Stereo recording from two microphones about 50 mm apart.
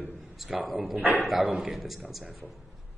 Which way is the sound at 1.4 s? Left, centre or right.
Centre.